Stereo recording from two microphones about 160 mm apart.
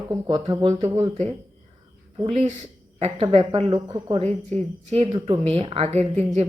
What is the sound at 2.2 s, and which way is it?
A woman's voice, 45° right (ahead or behind).